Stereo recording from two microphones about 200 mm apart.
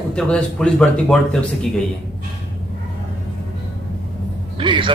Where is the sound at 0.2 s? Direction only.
5° left (ahead or behind).